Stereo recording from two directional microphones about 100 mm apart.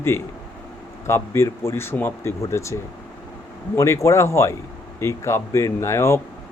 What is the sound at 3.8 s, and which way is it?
Speech, 30° left (ahead or behind).